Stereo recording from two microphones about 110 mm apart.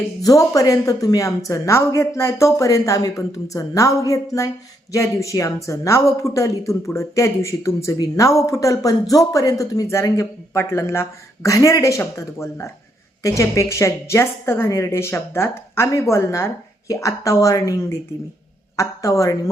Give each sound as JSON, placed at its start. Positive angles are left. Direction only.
{"t": 0.2, "sound": "speech", "side_deg": 30}